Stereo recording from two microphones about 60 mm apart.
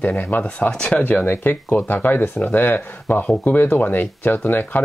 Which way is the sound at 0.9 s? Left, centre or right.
Left.